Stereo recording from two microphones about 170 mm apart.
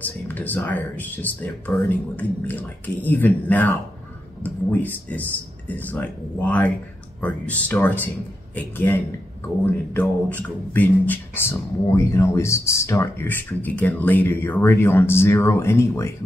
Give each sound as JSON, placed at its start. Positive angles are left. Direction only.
{"t": 0.0, "sound": "speech", "side_deg": 10}